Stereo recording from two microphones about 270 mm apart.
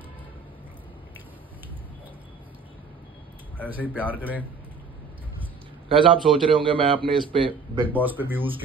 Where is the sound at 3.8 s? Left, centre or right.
Centre.